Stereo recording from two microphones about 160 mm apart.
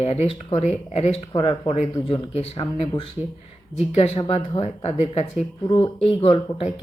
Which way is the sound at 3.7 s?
45° left (ahead or behind).